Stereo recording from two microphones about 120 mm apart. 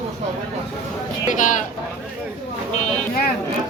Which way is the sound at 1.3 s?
90° left.